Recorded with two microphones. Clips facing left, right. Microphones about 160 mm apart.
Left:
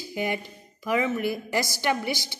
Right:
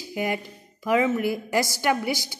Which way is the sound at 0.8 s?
15° right (ahead or behind).